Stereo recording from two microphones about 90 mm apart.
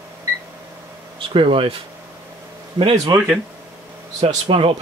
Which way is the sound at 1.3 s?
75° right (ahead or behind).